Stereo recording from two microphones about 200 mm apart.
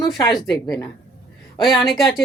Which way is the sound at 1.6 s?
Centre (ahead or behind).